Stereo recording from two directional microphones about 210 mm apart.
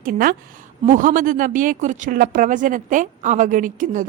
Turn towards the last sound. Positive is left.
turn(degrees=-40)  # may be behind; listen again after turning